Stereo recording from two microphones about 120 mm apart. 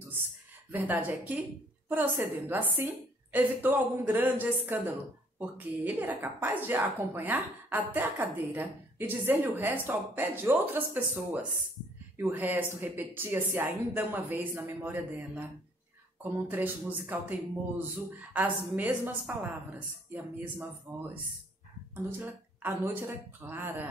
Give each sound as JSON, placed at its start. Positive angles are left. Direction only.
{"t": 0.7, "sound": "a woman's voice", "side_deg": -15}
{"t": 22.2, "sound": "a woman's voice", "side_deg": -15}